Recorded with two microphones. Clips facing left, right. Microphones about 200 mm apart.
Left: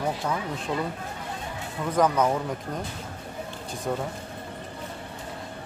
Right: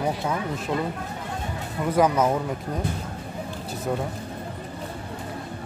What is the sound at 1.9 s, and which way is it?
Speech, 10° right (ahead or behind).